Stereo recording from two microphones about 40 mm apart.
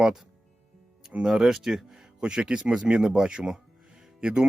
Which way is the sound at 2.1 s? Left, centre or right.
Right.